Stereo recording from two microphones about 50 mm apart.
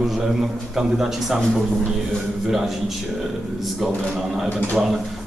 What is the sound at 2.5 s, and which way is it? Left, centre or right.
Speech, centre.